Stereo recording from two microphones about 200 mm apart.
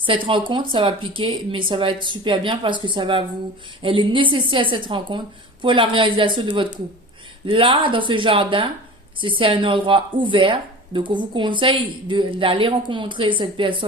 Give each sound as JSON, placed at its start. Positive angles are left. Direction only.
{"t": 0.0, "sound": "a woman's voice", "side_deg": -25}